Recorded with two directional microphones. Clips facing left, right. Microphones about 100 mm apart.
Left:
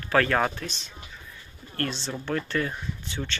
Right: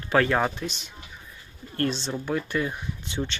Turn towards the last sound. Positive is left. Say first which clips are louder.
# right 3 dB
turn(degrees=-15)  # may be behind; listen again after turning